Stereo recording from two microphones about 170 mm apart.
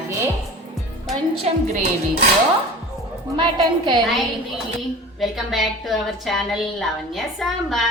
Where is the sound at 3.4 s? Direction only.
25° right (ahead or behind).